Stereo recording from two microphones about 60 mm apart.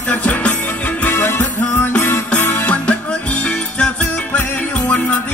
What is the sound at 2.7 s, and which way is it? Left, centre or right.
Music, centre.